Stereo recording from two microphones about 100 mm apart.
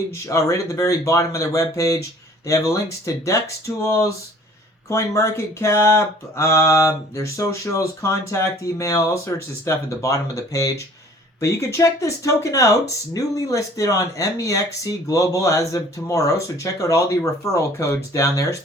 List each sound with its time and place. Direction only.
0.3 s speech: 30° left (ahead or behind)
3.1 s speech: 35° left (ahead or behind)